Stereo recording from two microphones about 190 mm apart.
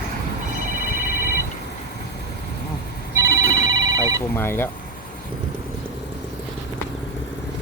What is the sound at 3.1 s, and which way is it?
Telephone, 15° right (ahead or behind).